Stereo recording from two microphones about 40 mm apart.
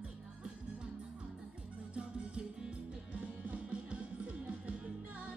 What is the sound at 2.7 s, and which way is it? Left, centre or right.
Music, right.